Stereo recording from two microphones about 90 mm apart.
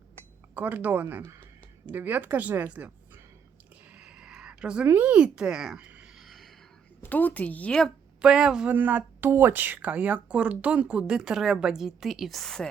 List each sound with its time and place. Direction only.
0.5 s speech: 20° right (ahead or behind)
3.9 s a sound: 10° right (ahead or behind)
4.9 s speech: 20° right (ahead or behind)
6.1 s a sound: centre (ahead or behind)
7.0 s a woman's voice: 20° left (ahead or behind)
8.2 s speech: 10° right (ahead or behind)
8.7 s speech: 20° right (ahead or behind); by 12.6 s 5° left (ahead or behind)